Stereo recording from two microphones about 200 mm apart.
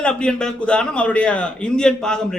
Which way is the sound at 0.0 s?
5° left (ahead or behind).